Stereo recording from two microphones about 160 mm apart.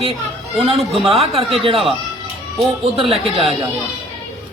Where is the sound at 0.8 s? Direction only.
Centre (ahead or behind).